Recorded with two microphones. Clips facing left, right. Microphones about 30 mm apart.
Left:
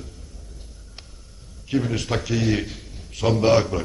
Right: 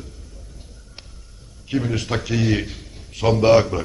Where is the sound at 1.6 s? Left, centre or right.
Centre.